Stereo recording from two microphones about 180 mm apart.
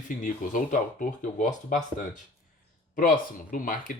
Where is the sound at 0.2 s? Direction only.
50° left (ahead or behind).